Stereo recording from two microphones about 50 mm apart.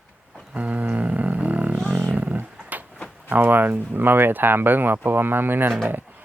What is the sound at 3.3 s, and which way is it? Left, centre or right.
Speech, right.